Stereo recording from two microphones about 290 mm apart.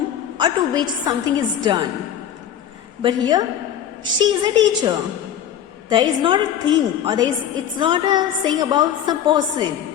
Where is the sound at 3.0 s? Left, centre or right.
Centre.